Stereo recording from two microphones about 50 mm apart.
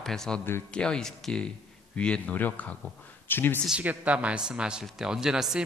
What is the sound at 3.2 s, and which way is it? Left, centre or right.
Speech, left.